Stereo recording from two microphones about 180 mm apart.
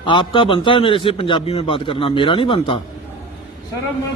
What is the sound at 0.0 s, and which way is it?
A man's voice, 25° left (ahead or behind).